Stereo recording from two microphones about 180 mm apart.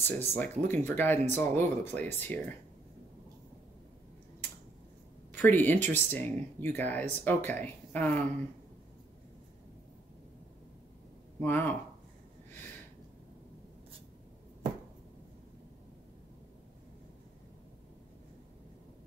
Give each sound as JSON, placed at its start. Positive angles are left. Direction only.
{"t": 0.0, "sound": "speech", "side_deg": 10}
{"t": 5.3, "sound": "speech", "side_deg": 10}
{"t": 11.4, "sound": "speech", "side_deg": 10}